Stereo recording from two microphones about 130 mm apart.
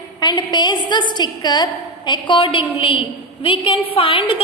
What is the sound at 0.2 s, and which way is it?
A woman's voice, 30° left (ahead or behind).